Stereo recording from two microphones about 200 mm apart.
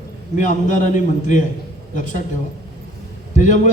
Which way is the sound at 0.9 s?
40° left (ahead or behind).